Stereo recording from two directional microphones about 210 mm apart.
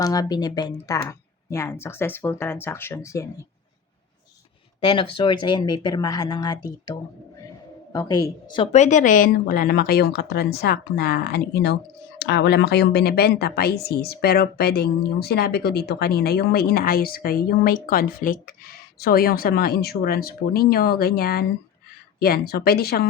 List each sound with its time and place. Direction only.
0.0 s speech: 15° left (ahead or behind)
4.8 s a woman's voice: 25° left (ahead or behind); by 23.0 s 50° left (ahead or behind)